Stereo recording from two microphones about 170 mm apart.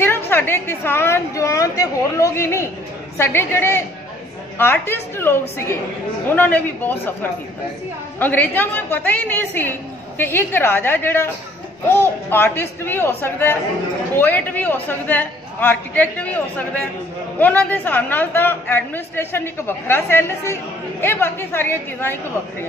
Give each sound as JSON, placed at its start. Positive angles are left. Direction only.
{"t": 0.0, "sound": "speech", "side_deg": 10}
{"t": 8.2, "sound": "speech", "side_deg": 10}